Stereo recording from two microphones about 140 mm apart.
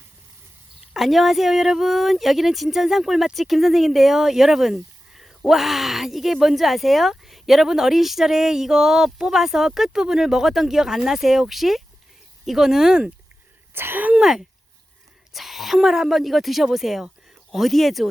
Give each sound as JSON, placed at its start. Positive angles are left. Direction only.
{"t": 0.9, "sound": "speech", "side_deg": 0}
{"t": 13.7, "sound": "speech", "side_deg": -15}